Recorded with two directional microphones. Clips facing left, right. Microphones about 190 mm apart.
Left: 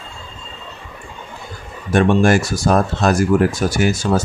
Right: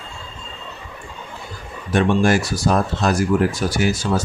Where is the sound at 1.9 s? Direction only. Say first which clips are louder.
Left 3 dB; 50° left (ahead or behind).